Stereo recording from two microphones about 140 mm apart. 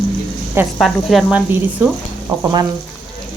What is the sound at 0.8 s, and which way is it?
Speech, centre (ahead or behind).